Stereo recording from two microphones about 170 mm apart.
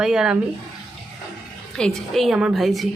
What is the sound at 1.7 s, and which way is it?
A woman's voice, 5° left (ahead or behind).